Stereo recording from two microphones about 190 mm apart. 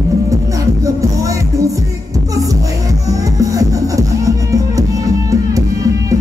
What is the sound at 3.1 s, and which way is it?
Music, 20° right (ahead or behind).